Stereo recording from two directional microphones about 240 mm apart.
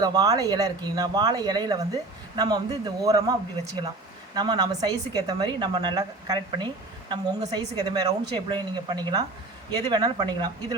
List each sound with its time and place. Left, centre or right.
0.0 s speech: centre